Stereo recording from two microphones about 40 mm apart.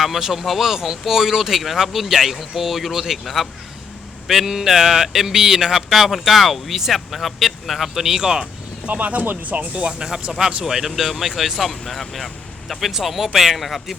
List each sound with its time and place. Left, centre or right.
0.0 s speech: centre
8.9 s speech: right
9.7 s speech: right
10.6 s speech: centre